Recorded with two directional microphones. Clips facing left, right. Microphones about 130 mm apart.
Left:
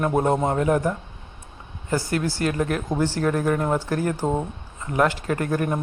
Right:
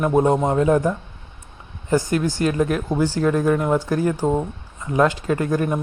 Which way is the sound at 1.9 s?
20° right (ahead or behind).